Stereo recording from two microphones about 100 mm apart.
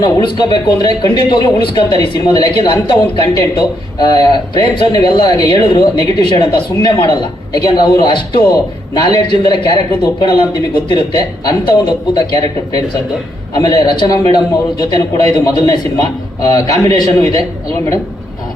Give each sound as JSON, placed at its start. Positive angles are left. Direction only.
{"t": 0.0, "sound": "a man's voice", "side_deg": 50}